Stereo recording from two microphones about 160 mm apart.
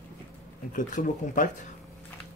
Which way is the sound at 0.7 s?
50° left (ahead or behind).